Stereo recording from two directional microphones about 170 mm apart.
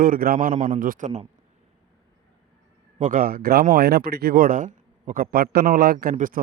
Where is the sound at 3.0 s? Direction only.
50° right (ahead or behind).